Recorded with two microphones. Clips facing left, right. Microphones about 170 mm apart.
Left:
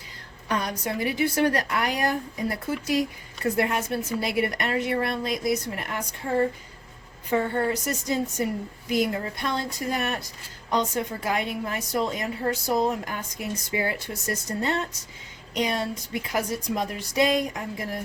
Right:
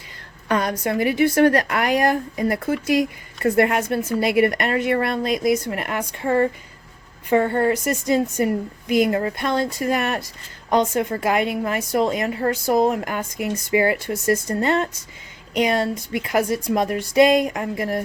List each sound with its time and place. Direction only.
0.4 s a woman's voice: 85° right
3.4 s a woman's voice: 65° right (ahead or behind)
3.8 s a woman's voice: 55° right (ahead or behind)
5.2 s speech: 90° right
5.6 s a woman's voice: 80° right
8.9 s a woman's voice: 75° right (ahead or behind)
10.7 s a woman's voice: 55° right (ahead or behind)
11.2 s a woman's voice: 80° right
11.9 s a woman's voice: 65° right (ahead or behind)
14.6 s a woman's voice: 80° right
15.5 s a woman's voice: 60° right (ahead or behind)
16.8 s a sound: 55° right (ahead or behind)
17.2 s a woman's voice: 90° right; by 18.0 s 75° right (ahead or behind)